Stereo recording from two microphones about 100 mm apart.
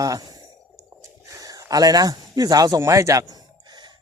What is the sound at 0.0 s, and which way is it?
Speech, 35° right (ahead or behind).